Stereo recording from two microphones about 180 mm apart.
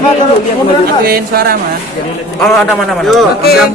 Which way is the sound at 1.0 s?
60° right (ahead or behind).